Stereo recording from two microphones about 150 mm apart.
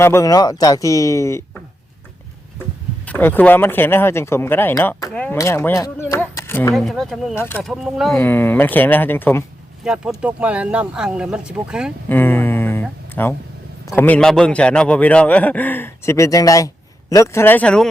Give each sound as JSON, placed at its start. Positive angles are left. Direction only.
{"t": 0.0, "sound": "speech", "side_deg": 20}
{"t": 3.1, "sound": "a man's voice", "side_deg": 10}
{"t": 6.7, "sound": "speech", "side_deg": 0}
{"t": 7.3, "sound": "a man's voice", "side_deg": 15}
{"t": 7.6, "sound": "speech", "side_deg": 0}
{"t": 8.2, "sound": "a man's voice", "side_deg": 15}
{"t": 9.8, "sound": "speech", "side_deg": -5}
{"t": 12.0, "sound": "a sound", "side_deg": 15}
{"t": 13.2, "sound": "a man's voice", "side_deg": 10}